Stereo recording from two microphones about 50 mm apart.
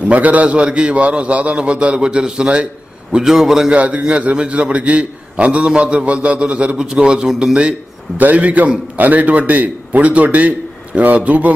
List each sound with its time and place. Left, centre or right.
0.0 s a man's voice: right; by 3.7 s centre
3.7 s a man's voice: right
8.2 s a man's voice: right